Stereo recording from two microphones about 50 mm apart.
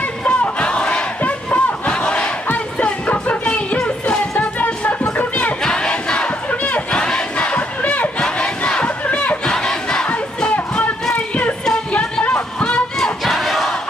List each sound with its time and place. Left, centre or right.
0.2 s battle cry: left
2.8 s music: left
5.6 s crowd: centre
6.5 s a sound: left
6.9 s crowd: centre
8.2 s battle cry: centre
9.5 s crowd: centre
11.1 s a sound: left
13.2 s crowd: centre